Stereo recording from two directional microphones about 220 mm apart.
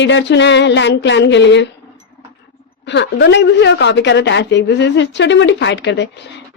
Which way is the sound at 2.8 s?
55° left (ahead or behind).